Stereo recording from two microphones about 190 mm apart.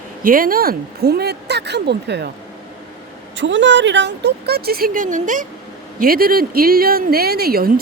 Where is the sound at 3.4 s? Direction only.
75° right (ahead or behind).